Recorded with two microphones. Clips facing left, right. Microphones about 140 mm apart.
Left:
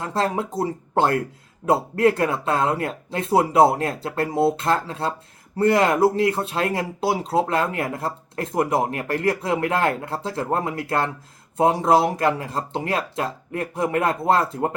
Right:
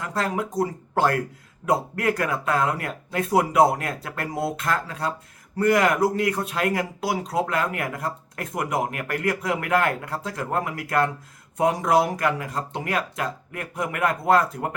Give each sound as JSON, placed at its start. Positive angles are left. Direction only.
{"t": 0.0, "sound": "speech", "side_deg": 25}